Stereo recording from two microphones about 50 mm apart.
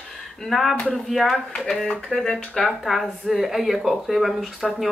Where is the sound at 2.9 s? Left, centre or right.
Centre.